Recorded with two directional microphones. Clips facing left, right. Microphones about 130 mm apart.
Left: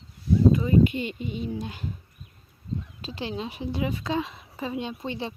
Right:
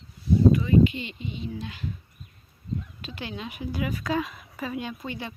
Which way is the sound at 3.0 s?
30° left (ahead or behind).